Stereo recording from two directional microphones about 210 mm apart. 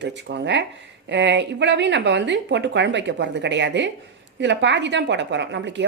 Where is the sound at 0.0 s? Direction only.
55° right (ahead or behind).